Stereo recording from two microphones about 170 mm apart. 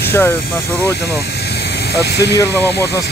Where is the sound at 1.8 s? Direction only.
75° left (ahead or behind).